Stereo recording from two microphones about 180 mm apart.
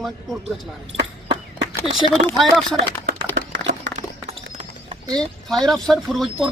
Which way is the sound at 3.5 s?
85° right.